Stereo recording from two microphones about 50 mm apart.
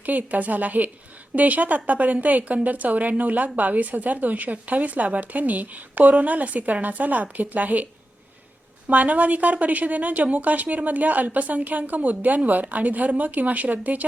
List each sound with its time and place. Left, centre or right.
0.0 s speech: right
8.9 s speech: right